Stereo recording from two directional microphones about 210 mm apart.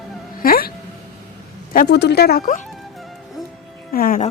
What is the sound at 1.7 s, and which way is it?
Speech, 45° left (ahead or behind).